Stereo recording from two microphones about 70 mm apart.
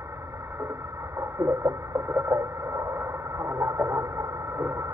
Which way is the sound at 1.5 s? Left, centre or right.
Right.